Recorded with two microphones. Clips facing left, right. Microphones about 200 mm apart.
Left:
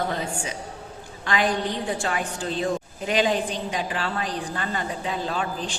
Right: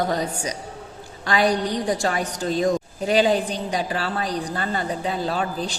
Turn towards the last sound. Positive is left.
turn(degrees=-40)  # may be behind; listen again after turning